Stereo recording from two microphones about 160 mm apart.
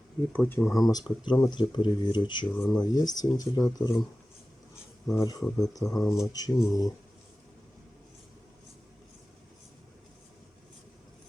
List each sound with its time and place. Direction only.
0.3 s speech: 15° left (ahead or behind)
5.1 s speech: 20° left (ahead or behind)